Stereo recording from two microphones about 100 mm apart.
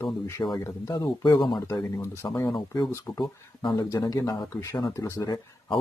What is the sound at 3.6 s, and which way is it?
Speech, 45° left (ahead or behind).